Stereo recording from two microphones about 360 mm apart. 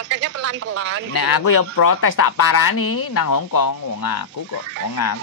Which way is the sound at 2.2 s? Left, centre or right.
Left.